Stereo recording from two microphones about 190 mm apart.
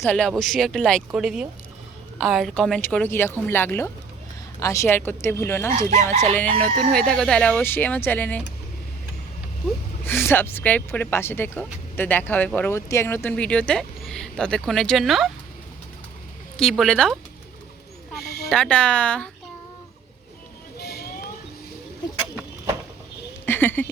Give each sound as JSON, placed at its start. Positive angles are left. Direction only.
{"t": 0.0, "sound": "speech", "side_deg": 0}
{"t": 5.7, "sound": "chicken", "side_deg": -40}
{"t": 6.9, "sound": "speech", "side_deg": 5}
{"t": 10.1, "sound": "speech", "side_deg": 10}
{"t": 16.6, "sound": "speech", "side_deg": 0}
{"t": 18.4, "sound": "speech", "side_deg": 5}
{"t": 20.7, "sound": "vehicle", "side_deg": 55}
{"t": 23.5, "sound": "a sound", "side_deg": 10}